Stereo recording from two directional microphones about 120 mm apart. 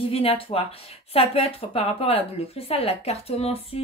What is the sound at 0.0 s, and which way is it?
Speech, 50° left (ahead or behind).